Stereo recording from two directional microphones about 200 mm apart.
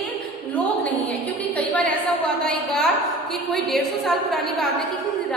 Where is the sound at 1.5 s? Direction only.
5° left (ahead or behind).